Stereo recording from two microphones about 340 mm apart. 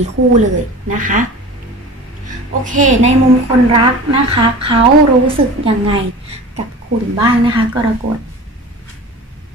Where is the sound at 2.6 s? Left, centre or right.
Right.